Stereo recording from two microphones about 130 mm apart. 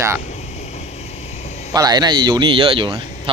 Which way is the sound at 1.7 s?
30° right (ahead or behind).